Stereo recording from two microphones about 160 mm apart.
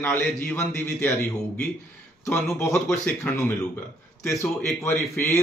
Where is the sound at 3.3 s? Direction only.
10° left (ahead or behind).